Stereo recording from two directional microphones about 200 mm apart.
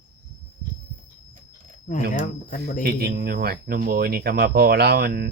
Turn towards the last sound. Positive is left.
turn(degrees=-50)  # may be behind; listen again after turning